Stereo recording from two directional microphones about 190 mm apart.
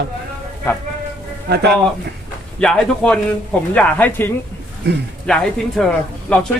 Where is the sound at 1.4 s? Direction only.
60° right (ahead or behind).